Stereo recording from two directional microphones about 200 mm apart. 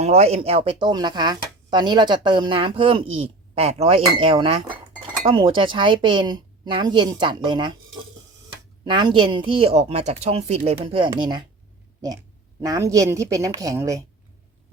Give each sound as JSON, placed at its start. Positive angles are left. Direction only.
{"t": 0.0, "sound": "speech", "side_deg": -30}
{"t": 8.8, "sound": "speech", "side_deg": -25}
{"t": 12.6, "sound": "speech", "side_deg": -15}